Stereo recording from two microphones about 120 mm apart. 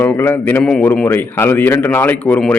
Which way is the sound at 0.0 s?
20° left (ahead or behind).